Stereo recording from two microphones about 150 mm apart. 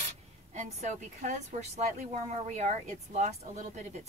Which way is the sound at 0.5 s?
50° right (ahead or behind).